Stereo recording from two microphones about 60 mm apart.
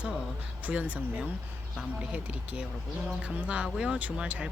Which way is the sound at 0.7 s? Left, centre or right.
Right.